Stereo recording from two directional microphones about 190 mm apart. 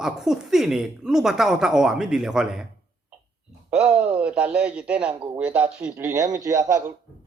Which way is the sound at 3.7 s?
5° right (ahead or behind).